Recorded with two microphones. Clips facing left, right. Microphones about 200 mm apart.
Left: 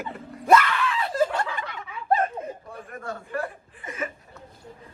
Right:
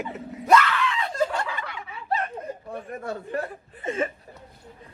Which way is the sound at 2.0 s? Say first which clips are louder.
Left 5 dB; 50° left (ahead or behind).